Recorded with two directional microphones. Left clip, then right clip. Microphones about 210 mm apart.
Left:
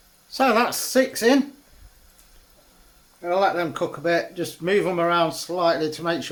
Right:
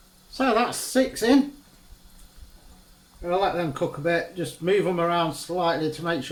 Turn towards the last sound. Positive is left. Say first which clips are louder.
# left 2 dB
turn(degrees=40)  # may be behind; listen again after turning